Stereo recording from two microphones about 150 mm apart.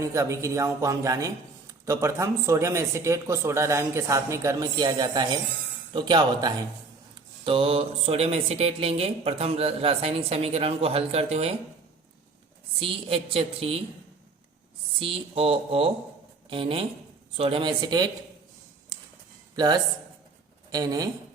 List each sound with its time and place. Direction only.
0.0 s a man's voice: 20° right (ahead or behind); by 11.5 s 45° right (ahead or behind)
12.8 s speech: 40° right (ahead or behind)
14.9 s speech: 35° right (ahead or behind)
19.5 s speech: 25° right (ahead or behind)